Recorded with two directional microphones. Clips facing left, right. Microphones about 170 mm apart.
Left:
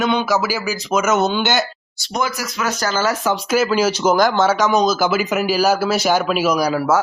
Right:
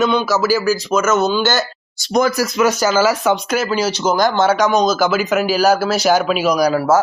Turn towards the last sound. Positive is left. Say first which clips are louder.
# right 2 dB
turn(degrees=5)  # may be behind; listen again after turning